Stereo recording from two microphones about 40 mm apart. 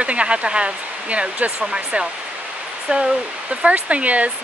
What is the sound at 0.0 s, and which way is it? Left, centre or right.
Speech, right.